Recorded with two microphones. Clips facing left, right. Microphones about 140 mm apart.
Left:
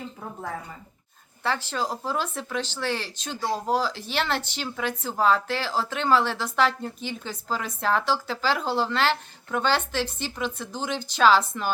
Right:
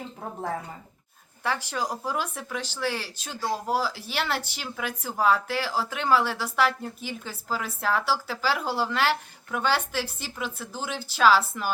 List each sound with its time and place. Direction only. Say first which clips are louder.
1.5 s speech: left 1 dB; 10° right (ahead or behind)